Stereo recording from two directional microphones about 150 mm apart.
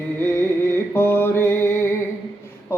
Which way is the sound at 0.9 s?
15° left (ahead or behind).